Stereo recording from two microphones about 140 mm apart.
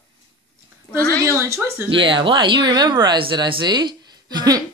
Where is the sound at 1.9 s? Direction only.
35° right (ahead or behind).